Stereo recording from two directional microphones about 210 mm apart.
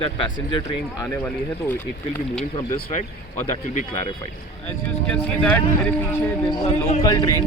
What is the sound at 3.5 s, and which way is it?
Speech, 35° left (ahead or behind).